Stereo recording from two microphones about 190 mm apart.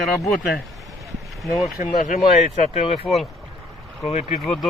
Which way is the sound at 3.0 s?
Centre (ahead or behind).